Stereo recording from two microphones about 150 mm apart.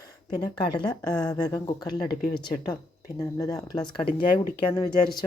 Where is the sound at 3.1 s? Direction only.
20° left (ahead or behind).